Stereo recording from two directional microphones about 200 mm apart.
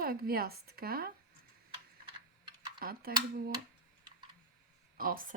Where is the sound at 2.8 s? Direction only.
45° right (ahead or behind).